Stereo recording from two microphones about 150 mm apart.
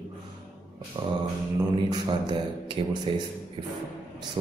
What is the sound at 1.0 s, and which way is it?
A man's voice, 35° right (ahead or behind).